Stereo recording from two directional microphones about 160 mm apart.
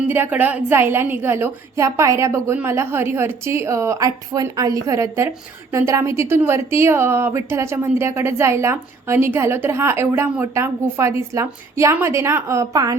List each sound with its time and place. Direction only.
0.1 s a woman's voice: 10° right (ahead or behind)